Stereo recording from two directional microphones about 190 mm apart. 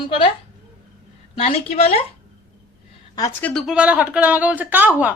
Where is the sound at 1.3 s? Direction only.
30° left (ahead or behind).